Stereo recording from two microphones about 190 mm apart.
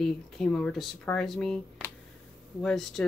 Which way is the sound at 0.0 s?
5° left (ahead or behind).